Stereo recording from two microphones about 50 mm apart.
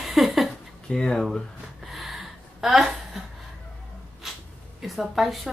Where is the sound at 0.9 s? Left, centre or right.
Centre.